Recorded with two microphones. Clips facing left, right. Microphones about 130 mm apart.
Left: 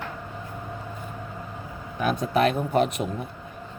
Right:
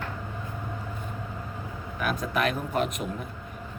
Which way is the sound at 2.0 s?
30° left (ahead or behind).